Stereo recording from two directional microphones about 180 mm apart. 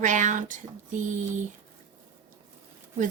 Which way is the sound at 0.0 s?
45° right (ahead or behind).